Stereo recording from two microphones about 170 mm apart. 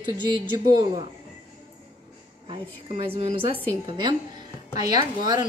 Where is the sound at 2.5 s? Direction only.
35° right (ahead or behind).